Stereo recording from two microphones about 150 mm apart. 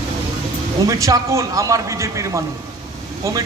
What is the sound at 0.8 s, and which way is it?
Speech, 20° right (ahead or behind).